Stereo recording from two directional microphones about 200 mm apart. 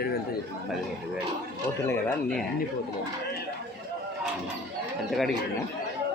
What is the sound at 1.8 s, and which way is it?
Speech, 5° left (ahead or behind).